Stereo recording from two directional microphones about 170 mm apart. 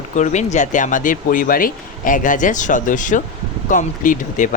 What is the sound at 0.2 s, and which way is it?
A man's voice, 45° left (ahead or behind).